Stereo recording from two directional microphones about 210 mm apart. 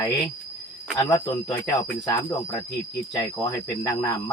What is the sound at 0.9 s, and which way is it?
Speech, 15° left (ahead or behind).